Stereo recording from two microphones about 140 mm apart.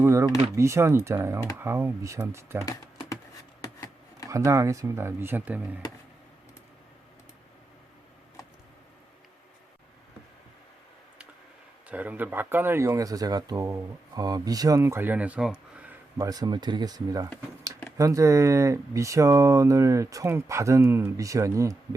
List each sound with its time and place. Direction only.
0.0 s speech: 20° right (ahead or behind)
2.6 s computer keyboard: 25° left (ahead or behind)
4.3 s speech: 20° right (ahead or behind)
11.9 s speech: 10° right (ahead or behind)
16.2 s speech: 25° right (ahead or behind)